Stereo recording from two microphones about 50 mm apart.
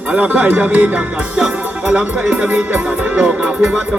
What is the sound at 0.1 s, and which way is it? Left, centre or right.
Speech, right.